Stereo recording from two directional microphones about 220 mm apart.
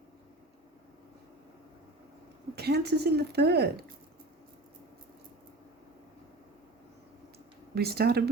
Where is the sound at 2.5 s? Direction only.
45° right (ahead or behind).